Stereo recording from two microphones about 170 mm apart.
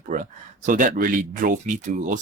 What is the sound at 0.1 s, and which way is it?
Speech, 50° right (ahead or behind).